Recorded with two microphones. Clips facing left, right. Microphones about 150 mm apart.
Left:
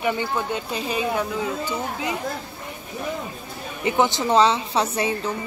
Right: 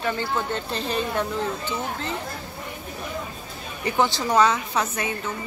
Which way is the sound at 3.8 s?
20° left (ahead or behind).